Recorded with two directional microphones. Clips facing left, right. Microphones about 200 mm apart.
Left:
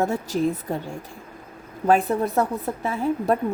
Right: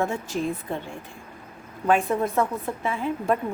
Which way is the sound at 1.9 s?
35° left (ahead or behind).